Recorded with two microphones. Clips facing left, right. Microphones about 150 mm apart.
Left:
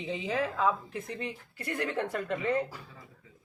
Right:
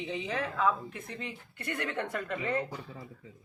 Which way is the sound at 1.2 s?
35° left (ahead or behind).